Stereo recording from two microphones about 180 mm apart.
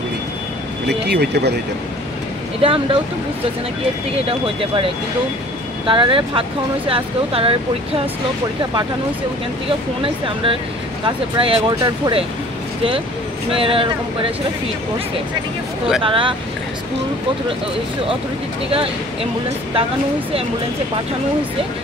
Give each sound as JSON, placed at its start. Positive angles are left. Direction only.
{"t": 1.0, "sound": "speech", "side_deg": -65}
{"t": 2.6, "sound": "speech", "side_deg": -30}
{"t": 4.3, "sound": "speech", "side_deg": -30}
{"t": 10.0, "sound": "speech", "side_deg": -30}
{"t": 13.5, "sound": "speech", "side_deg": -30}
{"t": 16.0, "sound": "speech", "side_deg": -30}